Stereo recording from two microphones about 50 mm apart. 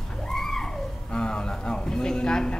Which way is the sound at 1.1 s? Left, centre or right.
Centre.